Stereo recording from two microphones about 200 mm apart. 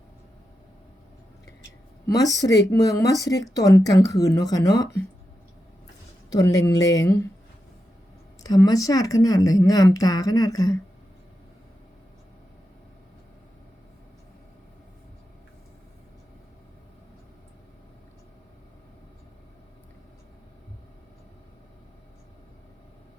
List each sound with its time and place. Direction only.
2.1 s speech: 15° left (ahead or behind)
6.3 s speech: 20° left (ahead or behind)
8.4 s speech: 20° left (ahead or behind)